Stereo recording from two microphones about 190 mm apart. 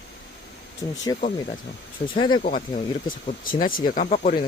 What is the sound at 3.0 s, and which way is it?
Speech, 45° left (ahead or behind).